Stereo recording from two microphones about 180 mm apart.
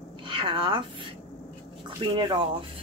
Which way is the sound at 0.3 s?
30° right (ahead or behind).